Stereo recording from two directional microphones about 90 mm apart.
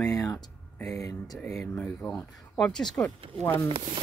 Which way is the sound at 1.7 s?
20° left (ahead or behind).